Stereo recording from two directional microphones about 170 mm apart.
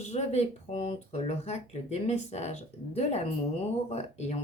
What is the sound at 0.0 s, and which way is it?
Speech, 40° left (ahead or behind).